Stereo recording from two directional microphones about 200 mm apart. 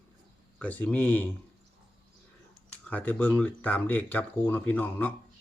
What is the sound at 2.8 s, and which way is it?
Speech, 5° left (ahead or behind).